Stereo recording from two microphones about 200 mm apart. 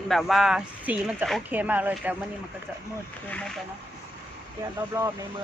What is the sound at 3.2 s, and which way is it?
Speech, 5° left (ahead or behind).